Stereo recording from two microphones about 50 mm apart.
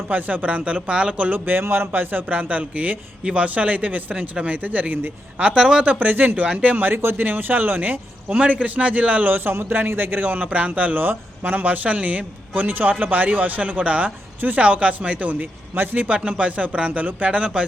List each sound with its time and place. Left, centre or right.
0.1 s a man's voice: right
5.9 s a man's voice: right
16.0 s speech: right
17.3 s speech: right